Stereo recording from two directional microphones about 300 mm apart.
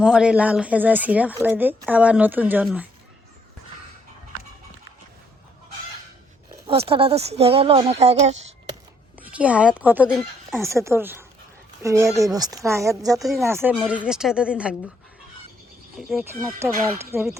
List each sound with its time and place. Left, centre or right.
0.0 s speech: centre
6.5 s speech: centre
9.1 s speech: centre
13.1 s speech: centre
16.0 s speech: centre